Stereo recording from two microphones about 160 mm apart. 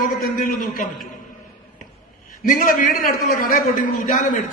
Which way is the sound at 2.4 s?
55° left (ahead or behind).